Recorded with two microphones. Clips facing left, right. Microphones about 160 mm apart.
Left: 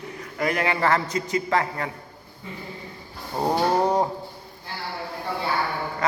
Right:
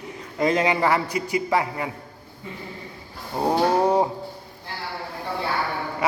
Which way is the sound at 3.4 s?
10° right (ahead or behind).